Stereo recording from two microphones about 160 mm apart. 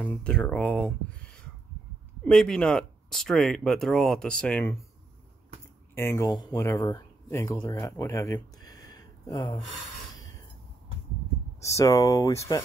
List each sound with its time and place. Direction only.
0.0 s speech: 10° left (ahead or behind)
2.2 s speech: 5° left (ahead or behind)
5.9 s speech: 15° left (ahead or behind)
11.6 s speech: 20° left (ahead or behind)